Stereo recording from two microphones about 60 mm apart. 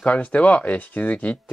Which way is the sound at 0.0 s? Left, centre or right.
Left.